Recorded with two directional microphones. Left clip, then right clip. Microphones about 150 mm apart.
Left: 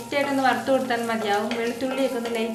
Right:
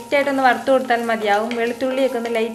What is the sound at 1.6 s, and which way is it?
Speech, 20° right (ahead or behind).